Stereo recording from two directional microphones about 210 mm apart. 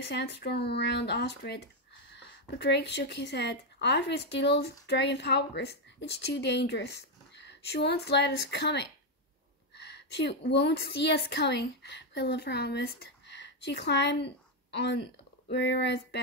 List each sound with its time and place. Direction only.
0.1 s a woman's voice: 55° left (ahead or behind)
2.6 s a woman's voice: 55° left (ahead or behind)
15.5 s speech: 55° left (ahead or behind)